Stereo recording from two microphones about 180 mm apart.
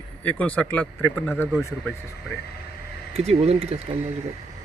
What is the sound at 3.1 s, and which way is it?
Speech, 35° right (ahead or behind).